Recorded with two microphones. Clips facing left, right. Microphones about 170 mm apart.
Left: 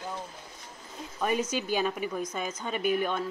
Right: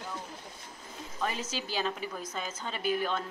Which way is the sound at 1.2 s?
15° left (ahead or behind).